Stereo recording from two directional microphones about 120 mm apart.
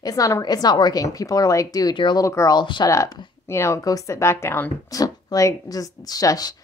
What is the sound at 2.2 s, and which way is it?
Speech, 25° left (ahead or behind).